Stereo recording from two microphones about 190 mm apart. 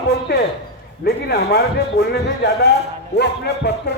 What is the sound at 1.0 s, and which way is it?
Speech, 60° left (ahead or behind).